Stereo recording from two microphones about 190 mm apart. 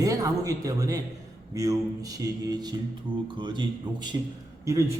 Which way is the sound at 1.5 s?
15° right (ahead or behind).